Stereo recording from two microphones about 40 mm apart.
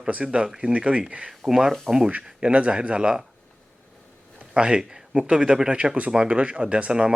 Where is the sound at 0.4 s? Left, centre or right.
Centre.